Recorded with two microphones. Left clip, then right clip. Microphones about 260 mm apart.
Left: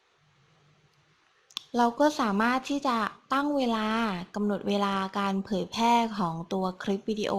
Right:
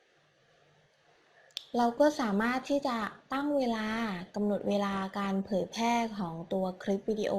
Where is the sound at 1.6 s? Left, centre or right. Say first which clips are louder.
Left 2 dB; centre.